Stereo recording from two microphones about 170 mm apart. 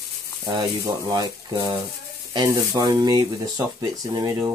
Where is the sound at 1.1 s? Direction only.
25° right (ahead or behind).